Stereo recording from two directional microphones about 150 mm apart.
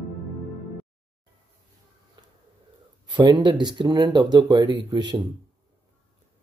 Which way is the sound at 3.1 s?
30° right (ahead or behind).